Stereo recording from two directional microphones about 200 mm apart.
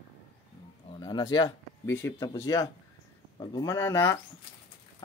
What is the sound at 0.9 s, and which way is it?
Speech, 20° left (ahead or behind).